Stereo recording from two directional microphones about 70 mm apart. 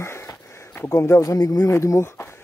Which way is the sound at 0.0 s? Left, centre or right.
Left.